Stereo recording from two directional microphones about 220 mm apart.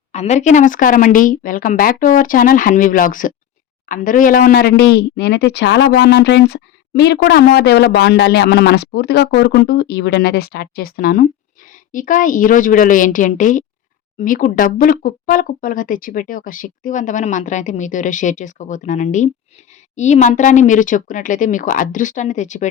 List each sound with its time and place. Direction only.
0.1 s speech: 30° left (ahead or behind)